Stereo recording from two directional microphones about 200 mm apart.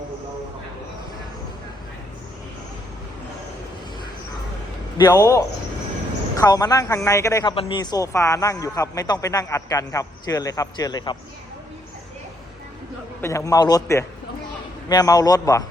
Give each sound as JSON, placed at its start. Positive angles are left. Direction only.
{"t": 4.9, "sound": "a man's voice", "side_deg": 15}
{"t": 7.5, "sound": "a man's voice", "side_deg": 25}
{"t": 13.2, "sound": "a man's voice", "side_deg": 15}